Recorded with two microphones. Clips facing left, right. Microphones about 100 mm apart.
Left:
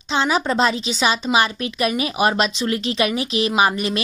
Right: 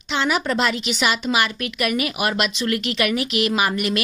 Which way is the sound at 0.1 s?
25° left (ahead or behind).